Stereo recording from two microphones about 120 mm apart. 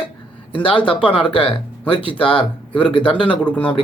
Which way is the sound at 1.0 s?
45° left (ahead or behind).